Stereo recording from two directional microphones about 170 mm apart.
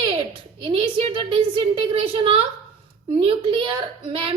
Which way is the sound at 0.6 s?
35° right (ahead or behind).